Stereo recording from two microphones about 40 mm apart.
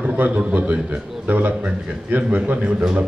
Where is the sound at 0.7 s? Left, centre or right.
Right.